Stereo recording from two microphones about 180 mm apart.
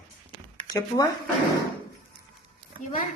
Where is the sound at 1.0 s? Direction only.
20° left (ahead or behind).